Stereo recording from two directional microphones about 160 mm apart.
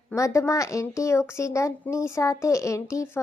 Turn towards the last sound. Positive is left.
turn(degrees=20)  # may be behind; listen again after turning